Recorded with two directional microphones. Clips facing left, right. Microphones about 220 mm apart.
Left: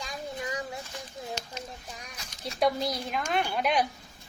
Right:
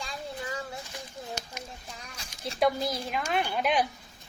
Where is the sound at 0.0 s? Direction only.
15° left (ahead or behind).